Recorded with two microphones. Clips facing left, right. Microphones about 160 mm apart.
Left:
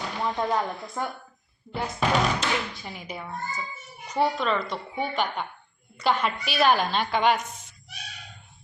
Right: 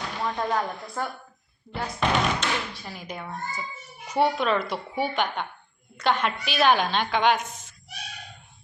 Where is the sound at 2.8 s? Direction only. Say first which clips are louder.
Even; 10° left (ahead or behind).